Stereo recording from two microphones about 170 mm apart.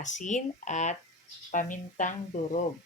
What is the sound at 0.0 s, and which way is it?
Speech, 45° left (ahead or behind).